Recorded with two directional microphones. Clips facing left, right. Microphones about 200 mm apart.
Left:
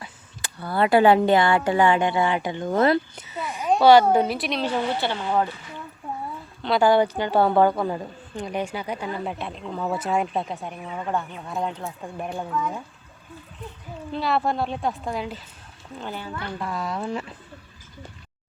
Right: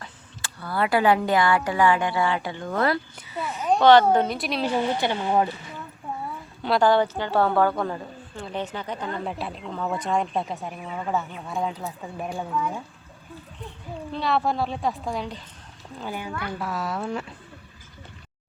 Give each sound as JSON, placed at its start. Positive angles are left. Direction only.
{"t": 0.6, "sound": "a woman's voice", "side_deg": 25}
{"t": 6.6, "sound": "a woman's voice", "side_deg": 0}
{"t": 6.8, "sound": "a woman's voice", "side_deg": 15}
{"t": 14.1, "sound": "a woman's voice", "side_deg": 0}
{"t": 16.0, "sound": "a woman's voice", "side_deg": -10}